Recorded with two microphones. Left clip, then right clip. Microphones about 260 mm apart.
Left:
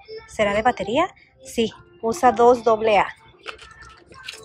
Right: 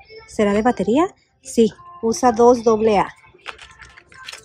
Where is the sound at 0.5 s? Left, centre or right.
Centre.